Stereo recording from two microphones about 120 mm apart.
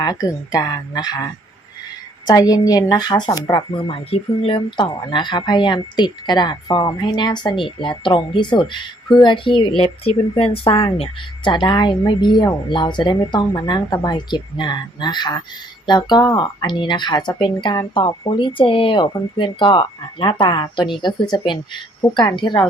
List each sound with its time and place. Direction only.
0.0 s speech: 30° left (ahead or behind)